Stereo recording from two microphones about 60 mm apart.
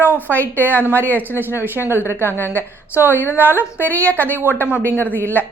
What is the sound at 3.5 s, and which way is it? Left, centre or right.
Speech, left.